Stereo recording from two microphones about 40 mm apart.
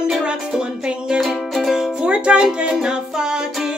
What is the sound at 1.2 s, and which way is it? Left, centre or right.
Music, centre.